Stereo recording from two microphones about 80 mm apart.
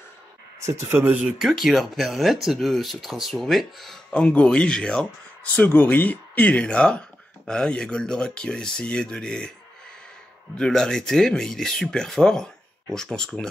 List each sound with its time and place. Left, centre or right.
0.6 s speech: right
1.0 s speech: centre
1.6 s speech: centre
4.1 s speech: centre
5.6 s speech: left
10.6 s speech: centre